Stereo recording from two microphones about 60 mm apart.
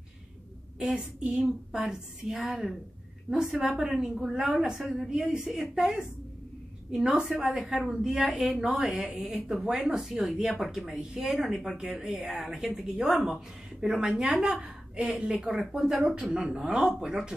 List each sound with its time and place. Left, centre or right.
0.7 s a woman's voice: centre
3.9 s a woman's voice: centre
4.4 s a woman's voice: centre
14.5 s a woman's voice: right
15.0 s a woman's voice: centre